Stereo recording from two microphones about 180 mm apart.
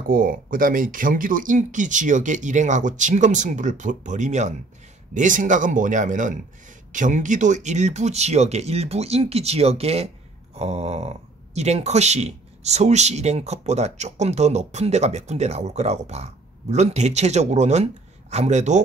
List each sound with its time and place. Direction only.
0.1 s speech: 50° right (ahead or behind)